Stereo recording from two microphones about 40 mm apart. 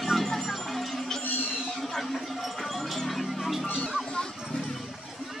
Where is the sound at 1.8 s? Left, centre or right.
Centre.